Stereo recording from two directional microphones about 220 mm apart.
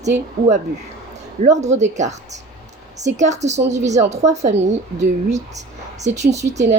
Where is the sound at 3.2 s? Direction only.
30° right (ahead or behind).